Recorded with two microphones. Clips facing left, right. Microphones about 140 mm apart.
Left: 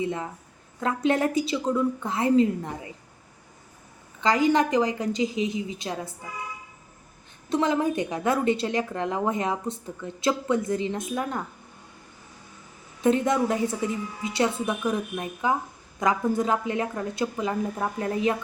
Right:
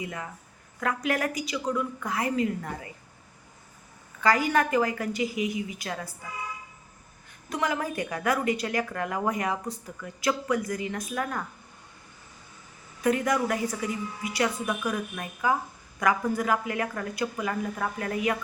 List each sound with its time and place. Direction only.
0.0 s a woman's voice: 25° left (ahead or behind)
4.2 s a woman's voice: 20° left (ahead or behind)
7.5 s a woman's voice: 25° left (ahead or behind)
13.0 s a woman's voice: 25° left (ahead or behind)